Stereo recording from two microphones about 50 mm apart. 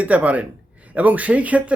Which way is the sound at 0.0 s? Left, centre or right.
Right.